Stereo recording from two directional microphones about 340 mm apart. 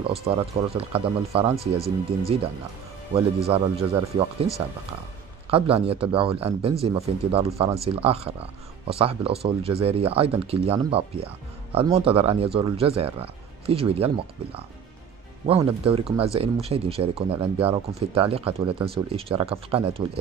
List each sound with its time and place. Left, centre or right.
0.0 s speech: centre
5.5 s speech: centre